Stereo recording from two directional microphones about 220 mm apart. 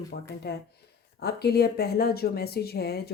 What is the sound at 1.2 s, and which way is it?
Speech, 45° left (ahead or behind).